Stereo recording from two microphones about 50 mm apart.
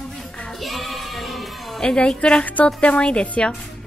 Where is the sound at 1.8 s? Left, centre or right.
Centre.